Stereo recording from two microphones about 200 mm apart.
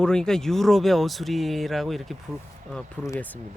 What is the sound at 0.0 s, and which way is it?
Speech, 5° left (ahead or behind).